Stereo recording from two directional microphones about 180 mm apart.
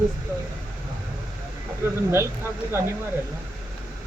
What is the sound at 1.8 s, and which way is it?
Speech, 15° right (ahead or behind).